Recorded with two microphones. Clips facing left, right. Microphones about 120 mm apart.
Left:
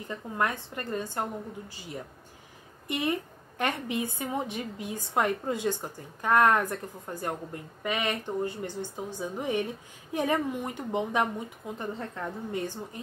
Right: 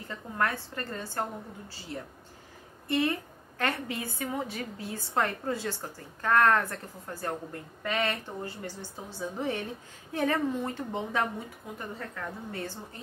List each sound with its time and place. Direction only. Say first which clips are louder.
0.1 s a woman's voice: left 1 dB; 15° left (ahead or behind)
2.9 s a woman's voice: right 1 dB; 15° left (ahead or behind)